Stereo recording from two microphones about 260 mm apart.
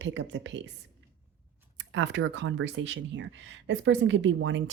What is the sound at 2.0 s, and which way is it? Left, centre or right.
Speech, right.